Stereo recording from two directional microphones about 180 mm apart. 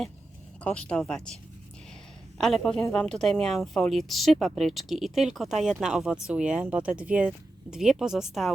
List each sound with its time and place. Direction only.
0.6 s speech: 5° left (ahead or behind)
2.4 s speech: centre (ahead or behind)